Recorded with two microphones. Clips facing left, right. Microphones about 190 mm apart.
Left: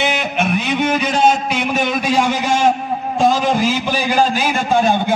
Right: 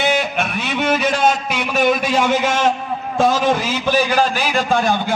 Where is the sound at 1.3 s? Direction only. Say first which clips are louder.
Left 3 dB; 50° left (ahead or behind).